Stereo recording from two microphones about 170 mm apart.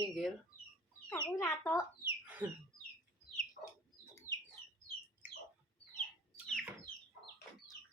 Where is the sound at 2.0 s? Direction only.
10° right (ahead or behind).